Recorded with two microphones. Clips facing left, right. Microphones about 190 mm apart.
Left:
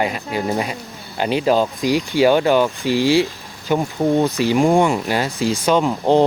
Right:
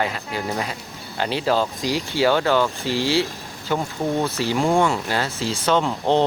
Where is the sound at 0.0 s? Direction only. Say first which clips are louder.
Left 4 dB; 15° left (ahead or behind).